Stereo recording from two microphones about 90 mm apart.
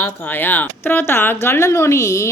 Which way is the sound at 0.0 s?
20° left (ahead or behind).